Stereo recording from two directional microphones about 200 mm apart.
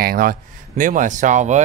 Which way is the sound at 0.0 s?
50° right (ahead or behind).